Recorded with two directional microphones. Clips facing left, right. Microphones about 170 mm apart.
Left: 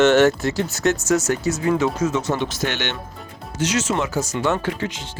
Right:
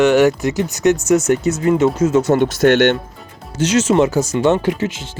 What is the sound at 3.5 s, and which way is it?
Speech, 25° right (ahead or behind).